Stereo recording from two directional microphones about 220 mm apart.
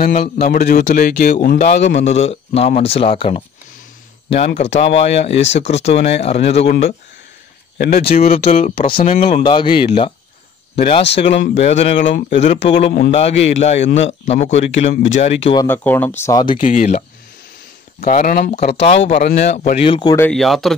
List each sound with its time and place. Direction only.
0.0 s speech: 35° left (ahead or behind); by 2.0 s 55° left (ahead or behind)
2.0 s speech: 30° left (ahead or behind)
4.6 s speech: 30° left (ahead or behind)
7.7 s speech: 40° left (ahead or behind)
8.2 s speech: 30° left (ahead or behind)
9.4 s speech: 20° left (ahead or behind)
15.6 s speech: 10° left (ahead or behind)
16.3 s speech: 20° left (ahead or behind)
16.6 s speech: 35° left (ahead or behind)
18.0 s speech: 40° left (ahead or behind)
18.8 s speech: 30° left (ahead or behind)
20.2 s speech: 5° left (ahead or behind)